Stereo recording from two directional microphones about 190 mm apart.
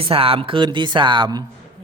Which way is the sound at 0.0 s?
30° right (ahead or behind).